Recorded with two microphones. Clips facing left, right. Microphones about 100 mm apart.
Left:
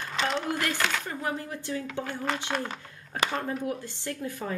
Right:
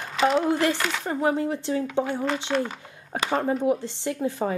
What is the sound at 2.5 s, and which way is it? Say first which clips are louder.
Speech: right 9 dB; 5° left (ahead or behind).